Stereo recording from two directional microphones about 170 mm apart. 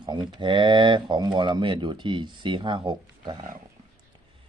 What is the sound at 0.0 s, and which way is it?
Speech, 25° right (ahead or behind).